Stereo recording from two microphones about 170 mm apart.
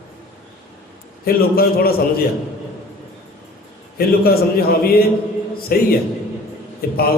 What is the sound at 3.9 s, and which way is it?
A man's voice, 65° left (ahead or behind).